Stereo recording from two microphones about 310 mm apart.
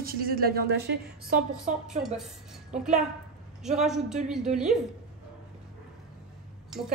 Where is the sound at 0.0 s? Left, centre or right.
Right.